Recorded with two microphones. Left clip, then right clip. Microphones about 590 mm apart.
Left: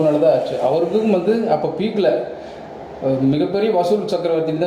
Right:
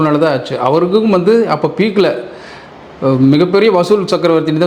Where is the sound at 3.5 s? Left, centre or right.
Right.